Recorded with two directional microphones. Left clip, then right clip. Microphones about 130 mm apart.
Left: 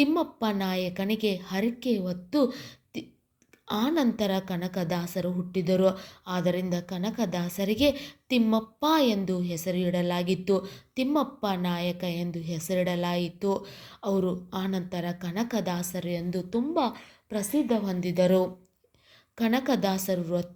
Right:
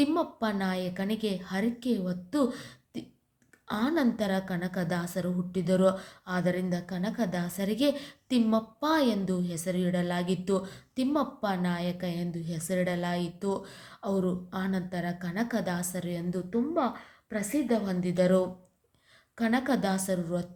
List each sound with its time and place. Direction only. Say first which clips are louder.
0.0 s a woman's voice: left 2 dB; 25° left (ahead or behind)